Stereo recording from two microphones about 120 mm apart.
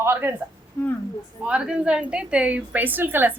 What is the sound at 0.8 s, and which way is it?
Speech, 20° left (ahead or behind).